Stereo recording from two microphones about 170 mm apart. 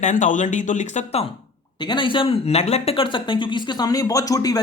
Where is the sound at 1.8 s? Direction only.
25° left (ahead or behind).